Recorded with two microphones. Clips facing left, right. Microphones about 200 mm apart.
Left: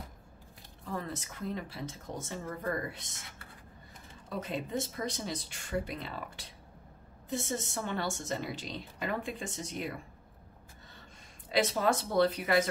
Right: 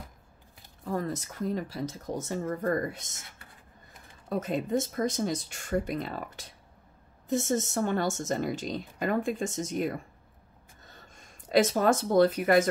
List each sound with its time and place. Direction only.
0.8 s speech: 40° right (ahead or behind)
4.3 s speech: 45° right (ahead or behind)